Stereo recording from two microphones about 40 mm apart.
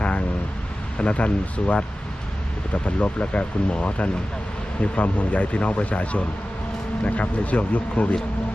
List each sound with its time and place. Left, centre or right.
0.0 s vehicle: left
0.9 s a man's voice: left